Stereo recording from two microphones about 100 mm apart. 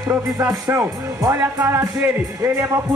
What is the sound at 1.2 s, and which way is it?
Speech, 30° right (ahead or behind).